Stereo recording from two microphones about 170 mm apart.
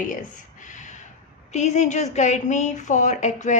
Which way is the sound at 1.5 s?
45° left (ahead or behind).